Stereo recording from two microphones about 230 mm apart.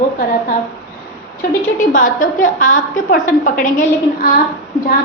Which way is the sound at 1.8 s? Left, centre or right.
Left.